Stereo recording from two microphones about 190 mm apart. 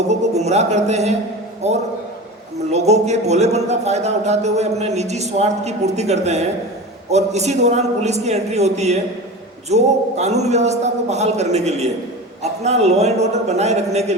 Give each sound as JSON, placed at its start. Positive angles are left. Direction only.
{"t": 0.1, "sound": "speech", "side_deg": -35}